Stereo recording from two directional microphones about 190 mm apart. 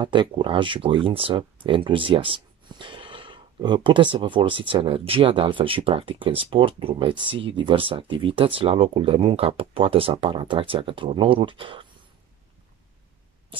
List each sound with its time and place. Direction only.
0.0 s speech: 25° right (ahead or behind)